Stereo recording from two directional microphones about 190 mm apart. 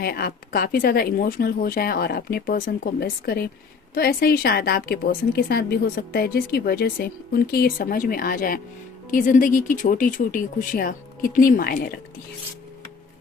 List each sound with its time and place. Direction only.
0.0 s speech: 50° left (ahead or behind)